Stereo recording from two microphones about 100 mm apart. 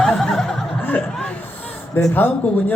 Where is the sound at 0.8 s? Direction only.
15° left (ahead or behind).